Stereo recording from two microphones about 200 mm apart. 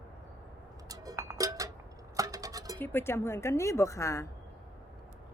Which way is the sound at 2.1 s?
15° right (ahead or behind).